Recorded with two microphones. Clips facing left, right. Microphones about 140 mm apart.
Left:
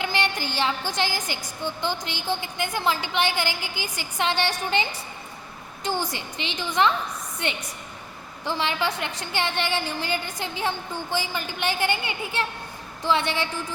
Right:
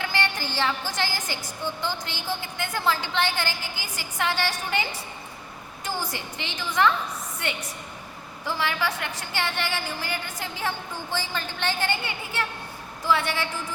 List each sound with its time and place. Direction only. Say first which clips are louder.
0.0 s music: left 2 dB; 20° left (ahead or behind)
0.9 s a woman's voice: left 2 dB; 20° left (ahead or behind)